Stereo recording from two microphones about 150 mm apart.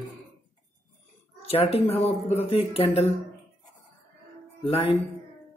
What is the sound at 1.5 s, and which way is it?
Speech, 40° left (ahead or behind).